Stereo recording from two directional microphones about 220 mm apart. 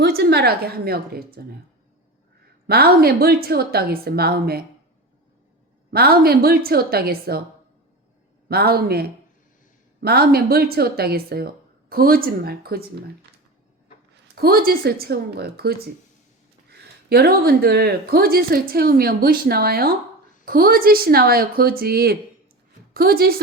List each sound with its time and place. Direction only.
0.0 s speech: 50° right (ahead or behind)
2.6 s speech: 45° right (ahead or behind)
5.9 s speech: 45° right (ahead or behind)
8.4 s speech: 45° right (ahead or behind)
14.3 s speech: 45° right (ahead or behind)